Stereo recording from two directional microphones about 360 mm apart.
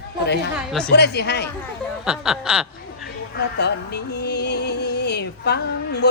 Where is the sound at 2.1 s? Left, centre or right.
Centre.